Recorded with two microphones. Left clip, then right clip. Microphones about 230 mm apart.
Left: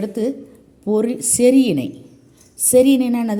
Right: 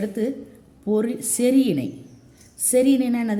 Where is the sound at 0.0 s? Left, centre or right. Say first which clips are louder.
Left 4 dB; centre.